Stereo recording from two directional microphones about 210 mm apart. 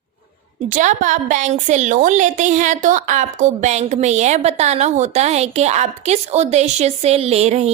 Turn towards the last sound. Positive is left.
turn(degrees=-30)  # may be behind; listen again after turning